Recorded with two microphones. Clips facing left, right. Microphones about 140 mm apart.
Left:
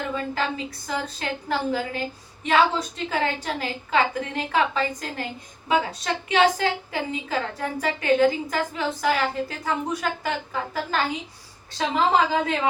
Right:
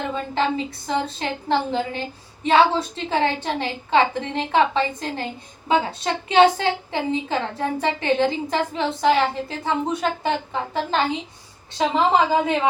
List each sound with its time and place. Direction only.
0.1 s a woman's voice: 25° right (ahead or behind)